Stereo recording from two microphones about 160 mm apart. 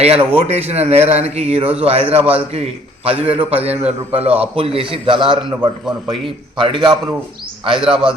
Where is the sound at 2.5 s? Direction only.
40° right (ahead or behind).